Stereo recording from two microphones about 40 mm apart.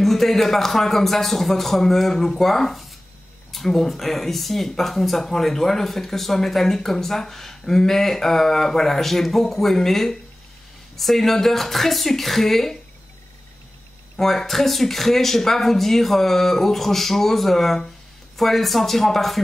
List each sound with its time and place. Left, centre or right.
0.0 s speech: centre
14.1 s speech: centre